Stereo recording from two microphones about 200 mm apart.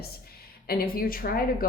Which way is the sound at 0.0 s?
50° left (ahead or behind).